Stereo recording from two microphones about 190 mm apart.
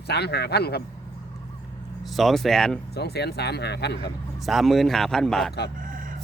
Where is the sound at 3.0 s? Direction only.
60° left (ahead or behind).